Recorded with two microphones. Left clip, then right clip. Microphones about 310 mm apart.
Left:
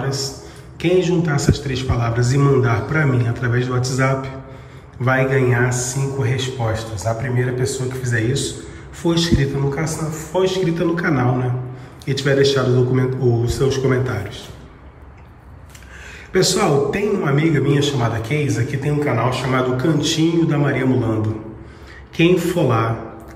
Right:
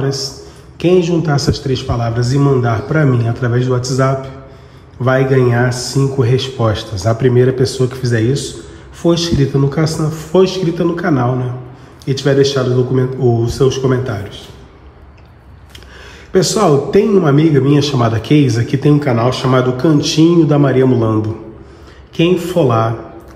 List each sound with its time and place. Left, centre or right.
0.0 s a man's voice: centre
16.3 s a man's voice: centre